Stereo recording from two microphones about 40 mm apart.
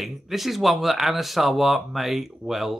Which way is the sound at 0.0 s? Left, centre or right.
Centre.